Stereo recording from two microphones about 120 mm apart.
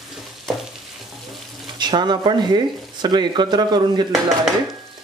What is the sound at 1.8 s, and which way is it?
Speech, 40° right (ahead or behind).